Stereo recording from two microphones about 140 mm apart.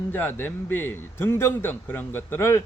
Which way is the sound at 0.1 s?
15° left (ahead or behind).